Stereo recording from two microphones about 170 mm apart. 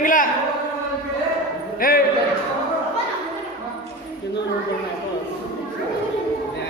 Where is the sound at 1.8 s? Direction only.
60° left (ahead or behind).